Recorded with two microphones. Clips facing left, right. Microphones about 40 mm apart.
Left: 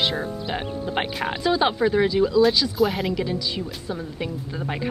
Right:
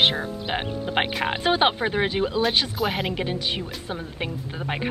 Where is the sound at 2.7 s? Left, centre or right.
Centre.